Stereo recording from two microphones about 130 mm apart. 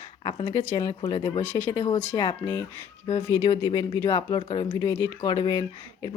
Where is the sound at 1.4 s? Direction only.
20° left (ahead or behind).